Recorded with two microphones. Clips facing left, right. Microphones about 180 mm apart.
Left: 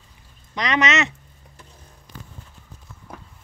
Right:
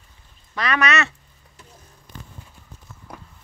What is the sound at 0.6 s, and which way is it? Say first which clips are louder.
Speech: left 1 dB; 20° left (ahead or behind).